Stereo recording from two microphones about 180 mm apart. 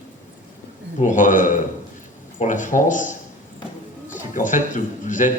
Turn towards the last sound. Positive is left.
turn(degrees=45)  # may be behind; listen again after turning